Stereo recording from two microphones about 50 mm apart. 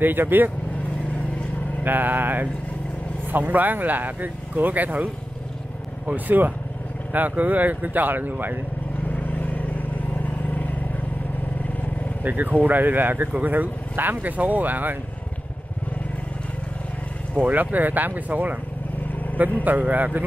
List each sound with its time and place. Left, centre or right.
0.0 s speech: right
1.9 s speech: right
6.1 s speech: right
9.1 s vehicle: left
12.2 s speech: right
17.4 s speech: right
19.6 s speech: right